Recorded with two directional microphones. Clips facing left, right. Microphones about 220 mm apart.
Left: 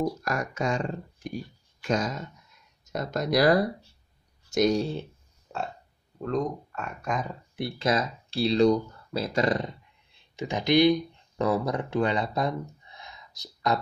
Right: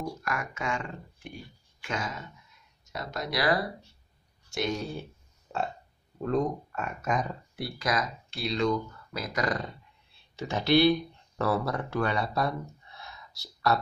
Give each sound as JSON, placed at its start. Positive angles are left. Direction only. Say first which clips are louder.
{"t": 0.2, "sound": "speech", "louder": "left 5 dB", "side_deg": 35}
{"t": 5.5, "sound": "burping", "louder": "right 2 dB", "side_deg": 5}
{"t": 6.2, "sound": "speech", "louder": "right 1 dB", "side_deg": -5}
{"t": 7.5, "sound": "speech", "louder": "left 4 dB", "side_deg": 25}